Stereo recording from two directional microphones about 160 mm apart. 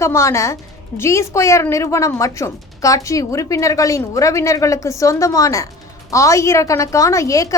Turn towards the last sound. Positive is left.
turn(degrees=20)  # may be behind; listen again after turning